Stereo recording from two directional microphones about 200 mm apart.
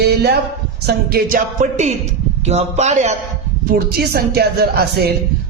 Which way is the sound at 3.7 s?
50° right (ahead or behind).